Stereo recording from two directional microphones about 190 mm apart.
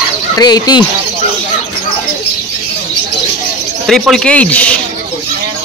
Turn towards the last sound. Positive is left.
turn(degrees=5)  # may be behind; listen again after turning